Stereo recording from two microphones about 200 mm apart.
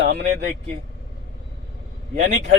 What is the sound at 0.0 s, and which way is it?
Speech, 60° right (ahead or behind).